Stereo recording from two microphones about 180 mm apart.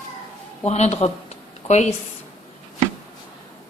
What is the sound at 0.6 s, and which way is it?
A woman's voice, 35° left (ahead or behind).